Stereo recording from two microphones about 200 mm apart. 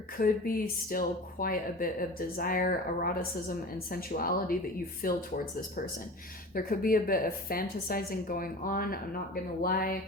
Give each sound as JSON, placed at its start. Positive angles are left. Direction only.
{"t": 0.2, "sound": "a woman's voice", "side_deg": 45}
{"t": 6.5, "sound": "a woman's voice", "side_deg": 45}